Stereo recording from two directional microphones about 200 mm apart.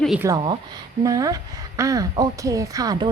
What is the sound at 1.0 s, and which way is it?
A woman's voice, 15° right (ahead or behind).